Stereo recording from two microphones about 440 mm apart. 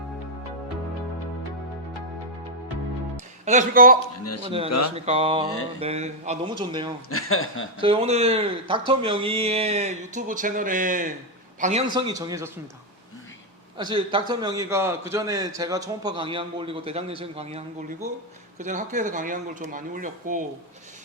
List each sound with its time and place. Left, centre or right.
3.4 s a man's voice: centre
4.0 s a man's voice: left
4.4 s a man's voice: centre
7.1 s speech: left
7.8 s a man's voice: centre
13.7 s a man's voice: centre
18.6 s a man's voice: centre